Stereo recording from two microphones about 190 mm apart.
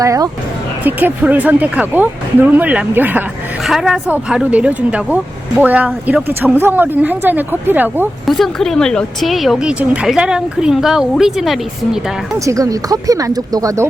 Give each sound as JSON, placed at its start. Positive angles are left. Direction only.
{"t": 0.0, "sound": "a woman's voice", "side_deg": -15}
{"t": 8.3, "sound": "speech", "side_deg": 0}
{"t": 12.5, "sound": "a woman's voice", "side_deg": -15}